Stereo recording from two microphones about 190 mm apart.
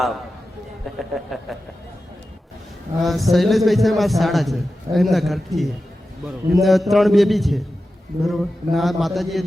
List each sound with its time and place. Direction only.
0.9 s a man's voice: centre (ahead or behind)
3.0 s a man's voice: centre (ahead or behind)